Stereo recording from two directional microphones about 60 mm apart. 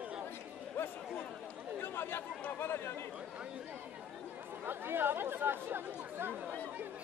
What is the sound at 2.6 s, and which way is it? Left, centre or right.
Speech, left.